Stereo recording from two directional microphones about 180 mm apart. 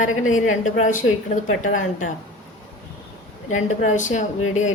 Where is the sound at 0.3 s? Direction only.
45° left (ahead or behind).